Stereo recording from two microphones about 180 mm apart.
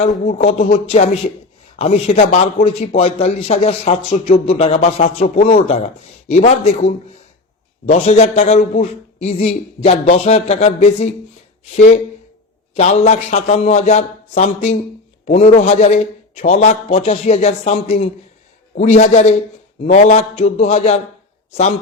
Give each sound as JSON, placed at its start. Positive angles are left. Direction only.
{"t": 0.3, "sound": "a man's voice", "side_deg": 35}
{"t": 12.7, "sound": "a man's voice", "side_deg": 40}